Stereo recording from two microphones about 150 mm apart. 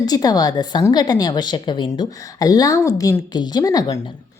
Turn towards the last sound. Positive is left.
turn(degrees=25)  # may be behind; listen again after turning